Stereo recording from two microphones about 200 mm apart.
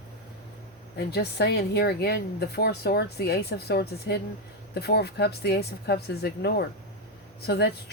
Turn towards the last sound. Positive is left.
turn(degrees=55)  # may be behind; listen again after turning